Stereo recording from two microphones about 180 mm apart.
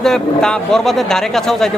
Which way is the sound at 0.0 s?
5° left (ahead or behind).